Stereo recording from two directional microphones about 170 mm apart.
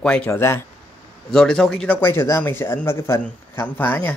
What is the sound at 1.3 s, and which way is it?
Speech, 5° left (ahead or behind).